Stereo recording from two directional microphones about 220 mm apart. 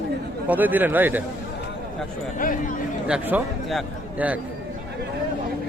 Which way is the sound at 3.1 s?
5° right (ahead or behind).